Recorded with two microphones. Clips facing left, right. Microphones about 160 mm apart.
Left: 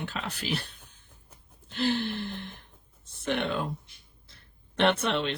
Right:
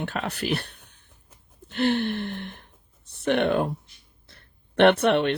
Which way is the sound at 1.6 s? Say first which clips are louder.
Right 5 dB; 60° right (ahead or behind).